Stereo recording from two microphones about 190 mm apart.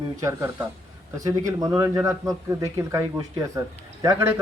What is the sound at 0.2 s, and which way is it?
Speech, 15° right (ahead or behind).